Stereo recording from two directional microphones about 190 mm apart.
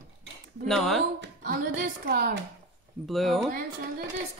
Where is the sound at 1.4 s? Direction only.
50° right (ahead or behind).